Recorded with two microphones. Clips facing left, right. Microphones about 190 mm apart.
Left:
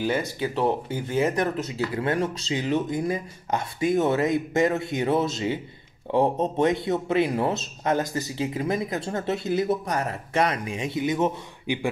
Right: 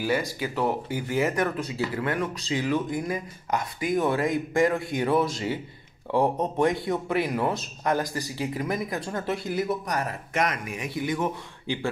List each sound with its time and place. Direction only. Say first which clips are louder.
0.0 s speech: left 1 dB; 20° left (ahead or behind)